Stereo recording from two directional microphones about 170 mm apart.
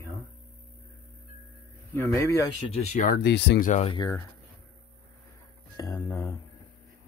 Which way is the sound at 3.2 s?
80° left.